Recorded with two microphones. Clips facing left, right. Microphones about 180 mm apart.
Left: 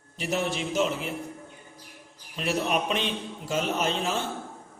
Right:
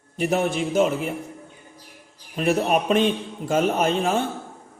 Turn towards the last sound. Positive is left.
turn(degrees=-55)  # may be behind; listen again after turning